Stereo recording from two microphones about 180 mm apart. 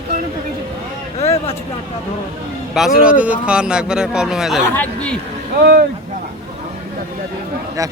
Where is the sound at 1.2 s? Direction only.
35° left (ahead or behind).